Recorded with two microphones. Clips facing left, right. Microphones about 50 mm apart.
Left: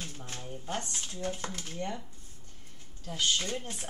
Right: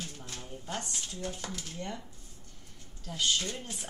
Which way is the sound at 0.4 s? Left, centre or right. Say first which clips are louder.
Left 2 dB; centre.